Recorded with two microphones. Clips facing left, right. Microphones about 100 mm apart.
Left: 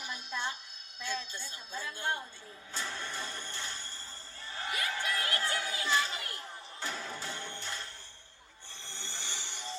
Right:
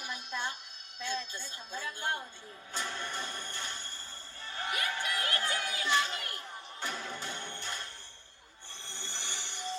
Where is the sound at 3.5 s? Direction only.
20° right (ahead or behind).